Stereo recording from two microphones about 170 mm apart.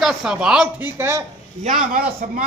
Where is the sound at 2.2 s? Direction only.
55° right (ahead or behind).